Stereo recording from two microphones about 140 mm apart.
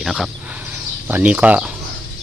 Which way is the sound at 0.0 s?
Centre (ahead or behind).